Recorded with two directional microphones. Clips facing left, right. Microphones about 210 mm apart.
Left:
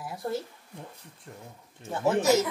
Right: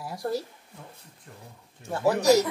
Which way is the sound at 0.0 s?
Centre (ahead or behind).